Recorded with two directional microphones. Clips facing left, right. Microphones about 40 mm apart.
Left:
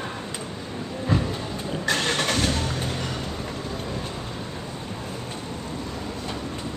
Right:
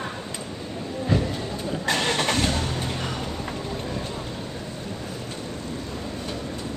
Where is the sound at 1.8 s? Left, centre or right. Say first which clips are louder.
Even; right.